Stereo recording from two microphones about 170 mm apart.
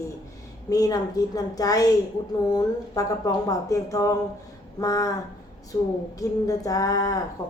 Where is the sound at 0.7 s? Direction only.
20° left (ahead or behind).